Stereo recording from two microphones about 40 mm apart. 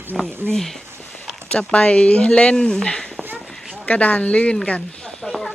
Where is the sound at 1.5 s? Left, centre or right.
Left.